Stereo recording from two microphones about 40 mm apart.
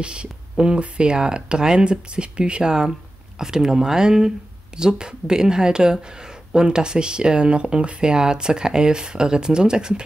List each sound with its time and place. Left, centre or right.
0.0 s speech: right